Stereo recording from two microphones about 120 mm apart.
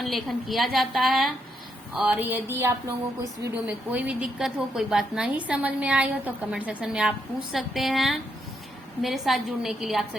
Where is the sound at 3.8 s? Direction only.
10° right (ahead or behind).